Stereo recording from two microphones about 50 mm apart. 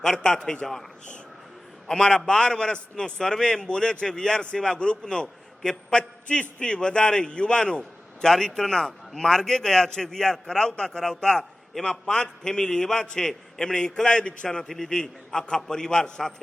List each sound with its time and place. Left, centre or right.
0.0 s a man's voice: centre
1.9 s a man's voice: centre